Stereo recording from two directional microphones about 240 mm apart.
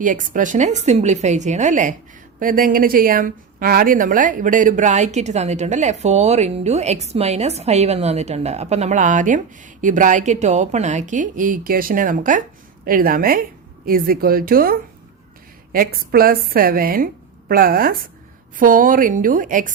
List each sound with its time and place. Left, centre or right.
0.0 s a woman's voice: right